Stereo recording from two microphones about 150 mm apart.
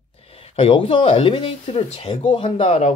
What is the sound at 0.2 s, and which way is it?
Speech, 40° left (ahead or behind).